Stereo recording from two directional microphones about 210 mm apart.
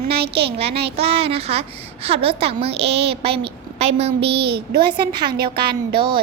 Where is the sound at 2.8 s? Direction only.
55° right (ahead or behind).